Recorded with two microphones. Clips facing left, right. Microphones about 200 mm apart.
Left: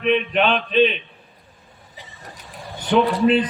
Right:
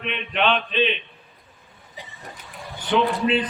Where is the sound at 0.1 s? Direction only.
40° left (ahead or behind).